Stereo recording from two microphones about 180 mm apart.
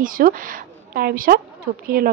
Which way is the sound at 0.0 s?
50° right (ahead or behind).